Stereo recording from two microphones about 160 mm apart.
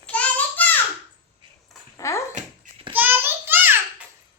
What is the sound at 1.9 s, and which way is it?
Dog, 20° left (ahead or behind).